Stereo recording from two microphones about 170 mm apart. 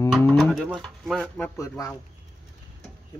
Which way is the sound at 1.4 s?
20° left (ahead or behind).